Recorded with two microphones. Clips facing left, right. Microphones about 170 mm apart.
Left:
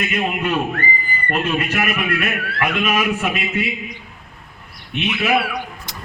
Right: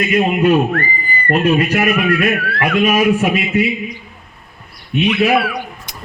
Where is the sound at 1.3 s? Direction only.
35° right (ahead or behind).